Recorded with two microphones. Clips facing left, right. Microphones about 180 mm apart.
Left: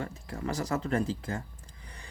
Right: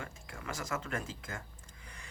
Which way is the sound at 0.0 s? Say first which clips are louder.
Left 9 dB; 35° left (ahead or behind).